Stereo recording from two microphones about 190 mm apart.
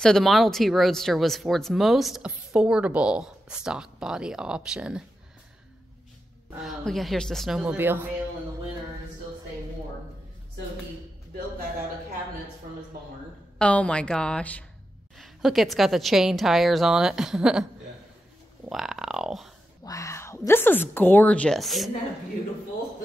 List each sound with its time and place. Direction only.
0.0 s speech: centre (ahead or behind)
6.6 s speech: centre (ahead or behind)
13.6 s speech: 5° left (ahead or behind)
18.7 s speech: centre (ahead or behind)
19.8 s speech: 15° left (ahead or behind); by 21.9 s centre (ahead or behind)